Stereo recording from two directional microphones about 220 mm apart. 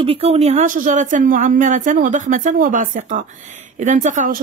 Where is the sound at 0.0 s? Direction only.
25° right (ahead or behind).